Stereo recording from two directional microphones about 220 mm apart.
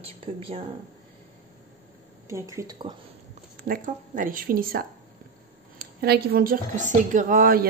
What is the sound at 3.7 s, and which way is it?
A woman's voice, 35° right (ahead or behind).